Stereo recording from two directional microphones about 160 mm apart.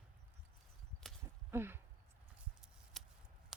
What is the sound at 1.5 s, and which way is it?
Speech, 15° right (ahead or behind).